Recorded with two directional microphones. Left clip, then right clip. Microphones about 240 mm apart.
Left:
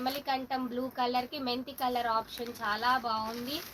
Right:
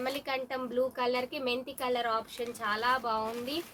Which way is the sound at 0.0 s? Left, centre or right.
Right.